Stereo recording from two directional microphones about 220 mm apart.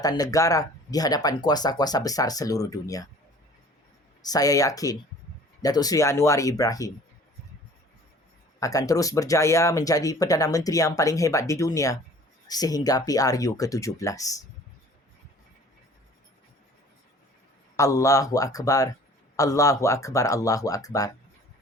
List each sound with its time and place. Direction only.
0.0 s speech: 15° left (ahead or behind)
4.3 s speech: 15° left (ahead or behind)
8.6 s speech: 15° left (ahead or behind)
17.7 s speech: 15° left (ahead or behind)